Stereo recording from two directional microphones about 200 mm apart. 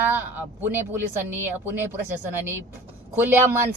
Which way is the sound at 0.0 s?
10° right (ahead or behind).